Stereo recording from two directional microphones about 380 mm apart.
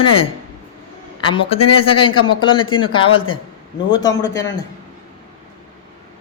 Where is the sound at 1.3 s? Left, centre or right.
Centre.